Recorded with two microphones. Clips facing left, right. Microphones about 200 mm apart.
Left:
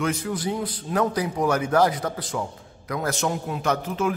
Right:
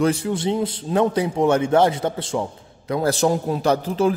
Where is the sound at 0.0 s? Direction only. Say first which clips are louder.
Right 6 dB; 30° right (ahead or behind).